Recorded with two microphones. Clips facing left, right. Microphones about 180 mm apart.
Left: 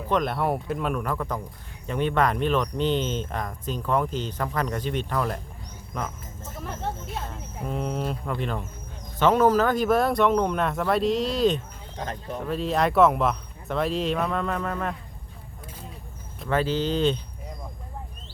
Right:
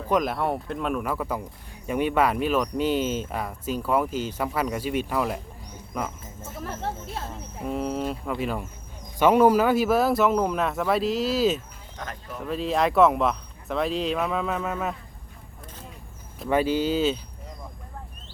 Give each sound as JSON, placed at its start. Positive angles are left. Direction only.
{"t": 0.1, "sound": "speech", "side_deg": -5}
{"t": 7.6, "sound": "speech", "side_deg": 0}
{"t": 11.9, "sound": "speech", "side_deg": 30}
{"t": 12.4, "sound": "speech", "side_deg": 0}
{"t": 16.5, "sound": "speech", "side_deg": -10}